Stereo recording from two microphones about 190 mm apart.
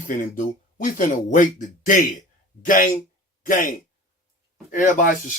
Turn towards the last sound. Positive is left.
turn(degrees=45)  # may be behind; listen again after turning